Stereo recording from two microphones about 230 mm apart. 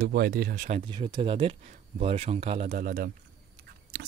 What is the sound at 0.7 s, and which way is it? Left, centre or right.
Speech, right.